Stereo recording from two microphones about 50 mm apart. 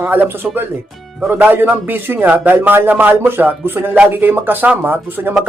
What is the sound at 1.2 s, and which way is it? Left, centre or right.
Speech, right.